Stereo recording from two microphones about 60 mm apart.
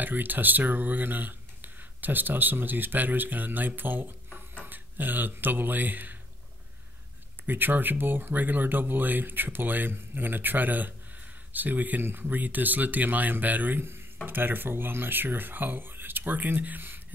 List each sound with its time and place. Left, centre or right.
0.0 s speech: right
7.4 s speech: right